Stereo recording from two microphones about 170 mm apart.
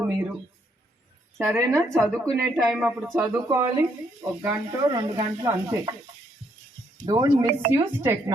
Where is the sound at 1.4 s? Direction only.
15° right (ahead or behind).